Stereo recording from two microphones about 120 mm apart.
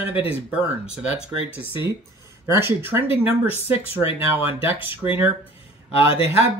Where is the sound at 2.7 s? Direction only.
20° right (ahead or behind).